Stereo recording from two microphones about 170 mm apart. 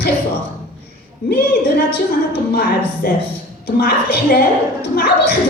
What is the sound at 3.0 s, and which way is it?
A woman's voice, 60° left (ahead or behind).